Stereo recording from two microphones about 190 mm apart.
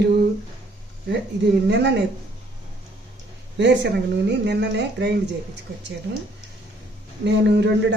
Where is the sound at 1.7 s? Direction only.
65° right (ahead or behind).